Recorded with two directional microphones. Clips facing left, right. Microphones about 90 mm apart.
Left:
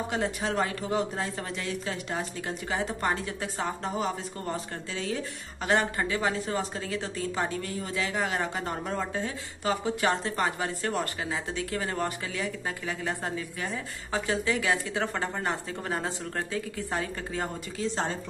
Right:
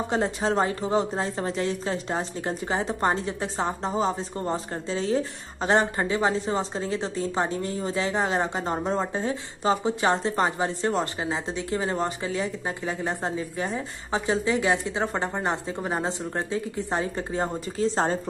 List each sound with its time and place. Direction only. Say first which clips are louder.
0.1 s a woman's voice: right 6 dB; 30° right (ahead or behind)